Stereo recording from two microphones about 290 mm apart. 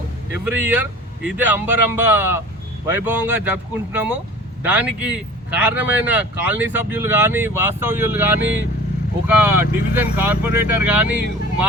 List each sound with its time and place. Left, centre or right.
0.3 s speech: centre
8.4 s speech: right
9.2 s speech: centre